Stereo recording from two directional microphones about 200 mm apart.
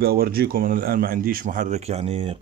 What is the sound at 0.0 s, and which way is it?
Speech, 50° right (ahead or behind).